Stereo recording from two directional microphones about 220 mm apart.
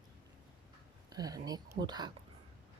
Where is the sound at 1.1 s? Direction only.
15° right (ahead or behind).